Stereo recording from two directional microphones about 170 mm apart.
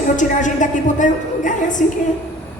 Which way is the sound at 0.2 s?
50° left (ahead or behind).